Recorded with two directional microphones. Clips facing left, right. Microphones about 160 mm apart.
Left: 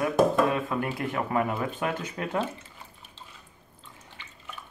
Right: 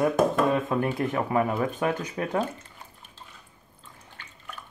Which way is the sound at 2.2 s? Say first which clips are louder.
Right 3 dB; 10° right (ahead or behind).